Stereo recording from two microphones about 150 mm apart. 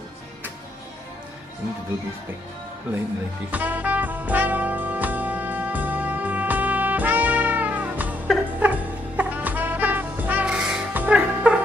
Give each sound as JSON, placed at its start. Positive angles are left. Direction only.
{"t": 3.5, "sound": "music", "side_deg": -10}